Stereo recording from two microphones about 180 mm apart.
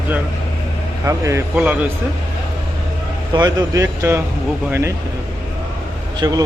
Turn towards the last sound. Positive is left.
turn(degrees=-25)  # may be behind; listen again after turning